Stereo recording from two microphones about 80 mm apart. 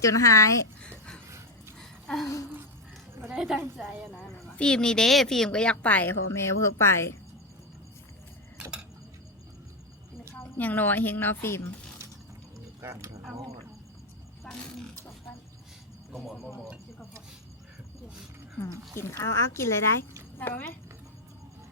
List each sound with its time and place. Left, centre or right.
0.0 s speech: left
0.8 s a sound: centre
2.2 s speech: left
3.2 s a woman's voice: centre
4.4 s a woman's voice: centre
6.3 s speech: left
10.4 s a woman's voice: left
12.8 s speech: right
14.4 s a sound: centre
16.1 s a woman's voice: centre
16.6 s a sound: centre
18.9 s a woman's voice: left